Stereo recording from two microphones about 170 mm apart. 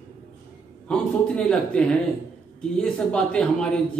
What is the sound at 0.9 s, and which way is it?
A man's voice, 5° left (ahead or behind).